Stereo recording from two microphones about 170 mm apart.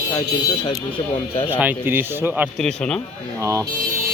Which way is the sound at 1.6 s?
10° right (ahead or behind).